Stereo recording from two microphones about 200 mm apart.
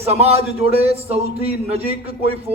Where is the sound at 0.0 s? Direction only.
30° right (ahead or behind).